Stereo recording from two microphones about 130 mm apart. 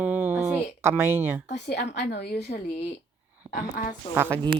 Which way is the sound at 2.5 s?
90° left.